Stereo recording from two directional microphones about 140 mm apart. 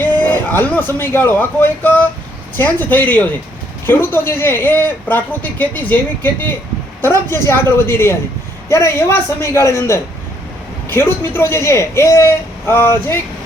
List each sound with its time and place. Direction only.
0.0 s speech: 15° left (ahead or behind)
7.0 s a man's voice: 15° left (ahead or behind)